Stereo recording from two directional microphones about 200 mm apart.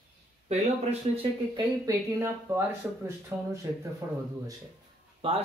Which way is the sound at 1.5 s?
15° right (ahead or behind).